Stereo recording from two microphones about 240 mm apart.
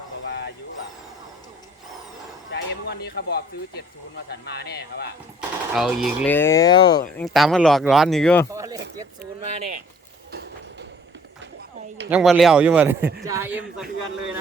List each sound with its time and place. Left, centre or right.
0.3 s bow-wow: left
2.5 s a sound: left
4.3 s speech: left
5.7 s speech: centre
7.2 s speech: centre
8.5 s a sound: centre
9.4 s speech: right
12.0 s speech: centre